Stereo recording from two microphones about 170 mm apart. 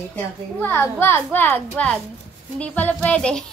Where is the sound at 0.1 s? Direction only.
10° left (ahead or behind).